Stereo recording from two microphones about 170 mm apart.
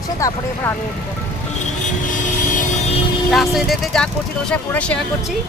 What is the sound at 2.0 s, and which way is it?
Vehicle, 50° left (ahead or behind).